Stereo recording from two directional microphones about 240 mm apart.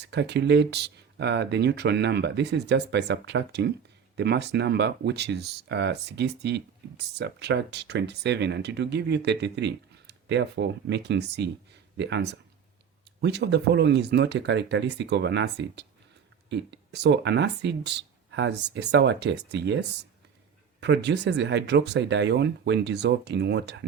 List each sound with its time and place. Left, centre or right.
0.1 s speech: right
20.8 s speech: right